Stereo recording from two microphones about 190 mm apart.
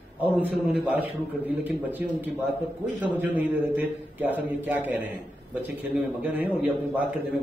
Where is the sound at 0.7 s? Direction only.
10° right (ahead or behind).